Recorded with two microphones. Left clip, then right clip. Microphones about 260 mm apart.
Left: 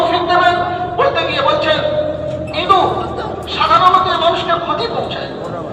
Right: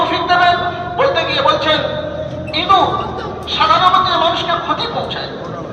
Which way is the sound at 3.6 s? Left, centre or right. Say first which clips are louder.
Even; right.